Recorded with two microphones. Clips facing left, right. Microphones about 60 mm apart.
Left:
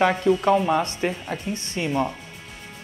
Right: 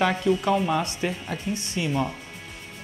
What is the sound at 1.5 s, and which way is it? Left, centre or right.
Speech, left.